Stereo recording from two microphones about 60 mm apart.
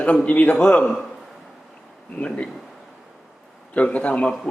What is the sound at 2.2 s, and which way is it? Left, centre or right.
Speech, centre.